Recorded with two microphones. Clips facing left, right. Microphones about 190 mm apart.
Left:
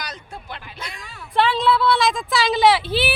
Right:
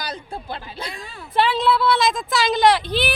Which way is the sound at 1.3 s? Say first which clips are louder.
Even; centre (ahead or behind).